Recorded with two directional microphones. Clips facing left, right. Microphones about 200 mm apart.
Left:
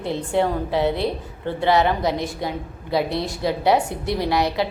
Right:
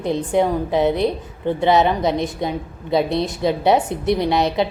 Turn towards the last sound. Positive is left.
turn(degrees=-20)  # may be behind; listen again after turning